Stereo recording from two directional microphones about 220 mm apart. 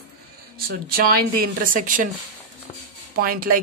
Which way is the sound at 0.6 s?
45° right (ahead or behind).